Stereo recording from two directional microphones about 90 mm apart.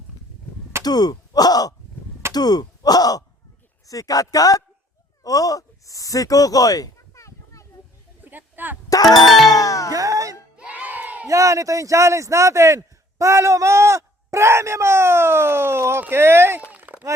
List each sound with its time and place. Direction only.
0.9 s speech: 50° left (ahead or behind)
8.2 s a sound: 20° right (ahead or behind)
9.2 s music: centre (ahead or behind)
9.5 s music: 40° left (ahead or behind)
9.9 s music: 40° right (ahead or behind)
10.6 s crowd: 15° right (ahead or behind)
11.3 s a man's voice: 35° right (ahead or behind)
16.7 s a sound: 20° right (ahead or behind)